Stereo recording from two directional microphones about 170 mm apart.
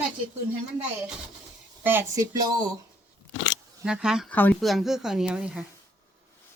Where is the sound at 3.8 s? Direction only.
5° right (ahead or behind).